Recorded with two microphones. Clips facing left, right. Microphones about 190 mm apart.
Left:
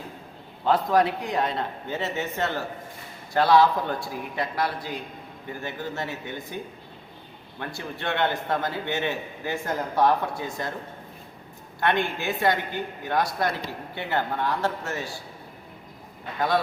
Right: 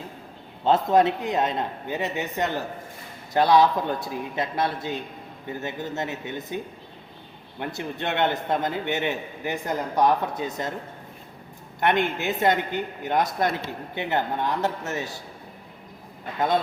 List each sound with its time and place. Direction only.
0.6 s a man's voice: 25° right (ahead or behind)
7.6 s a man's voice: 20° right (ahead or behind)
11.8 s a man's voice: 20° right (ahead or behind)